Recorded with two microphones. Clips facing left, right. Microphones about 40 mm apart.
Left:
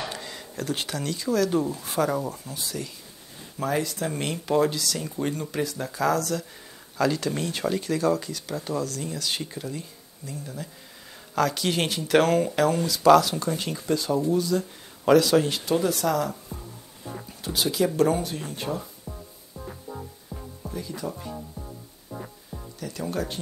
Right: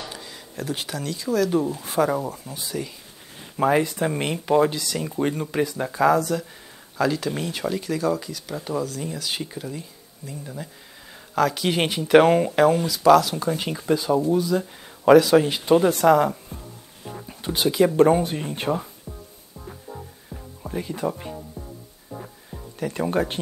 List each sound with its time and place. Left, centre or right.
0.1 s a sound: centre
0.6 s speech: centre
3.5 s speech: right
7.0 s speech: centre
12.8 s speech: centre
15.6 s speech: right
20.3 s music: right
20.6 s speech: right
22.8 s speech: right